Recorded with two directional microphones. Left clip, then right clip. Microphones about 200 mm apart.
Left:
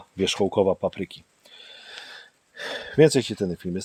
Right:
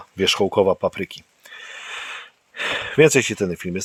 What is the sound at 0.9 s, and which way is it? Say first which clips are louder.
Gasp: right 5 dB; 5° left (ahead or behind).